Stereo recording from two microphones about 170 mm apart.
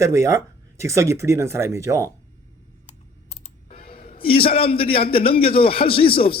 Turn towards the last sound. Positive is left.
turn(degrees=30)  # may be behind; listen again after turning